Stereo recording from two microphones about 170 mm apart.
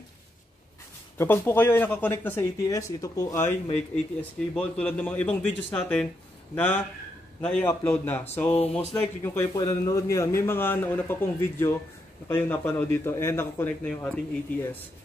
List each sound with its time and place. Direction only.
1.1 s a man's voice: 15° left (ahead or behind)
4.2 s a man's voice: 5° left (ahead or behind)
8.5 s speech: 35° left (ahead or behind)
8.7 s a man's voice: 15° left (ahead or behind)